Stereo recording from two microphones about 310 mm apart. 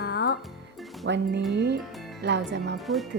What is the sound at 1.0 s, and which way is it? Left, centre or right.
Speech, right.